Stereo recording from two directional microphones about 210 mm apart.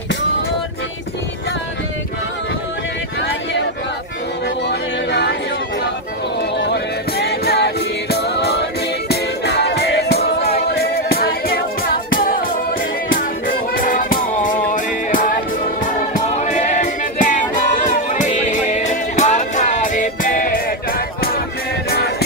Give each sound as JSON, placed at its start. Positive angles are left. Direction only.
{"t": 4.6, "sound": "music", "side_deg": 55}
{"t": 6.6, "sound": "music", "side_deg": 50}
{"t": 13.7, "sound": "music", "side_deg": 40}